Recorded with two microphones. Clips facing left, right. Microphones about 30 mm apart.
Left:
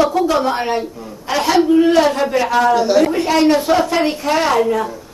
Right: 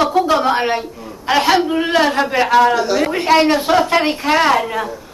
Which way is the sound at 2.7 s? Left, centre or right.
Centre.